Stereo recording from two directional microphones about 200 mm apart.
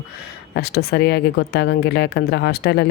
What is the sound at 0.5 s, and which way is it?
Speech, 50° left (ahead or behind).